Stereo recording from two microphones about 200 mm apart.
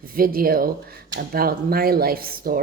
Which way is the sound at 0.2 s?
45° right (ahead or behind).